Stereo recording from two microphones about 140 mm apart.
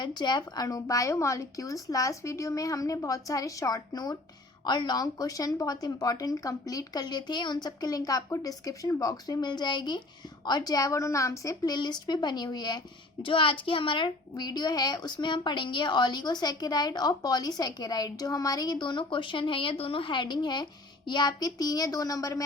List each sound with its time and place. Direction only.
0.0 s a woman's voice: 30° left (ahead or behind)